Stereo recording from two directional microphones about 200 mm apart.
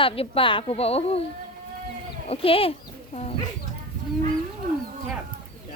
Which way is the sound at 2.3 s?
30° left (ahead or behind).